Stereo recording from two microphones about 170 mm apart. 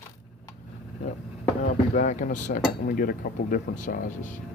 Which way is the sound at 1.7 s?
45° left (ahead or behind).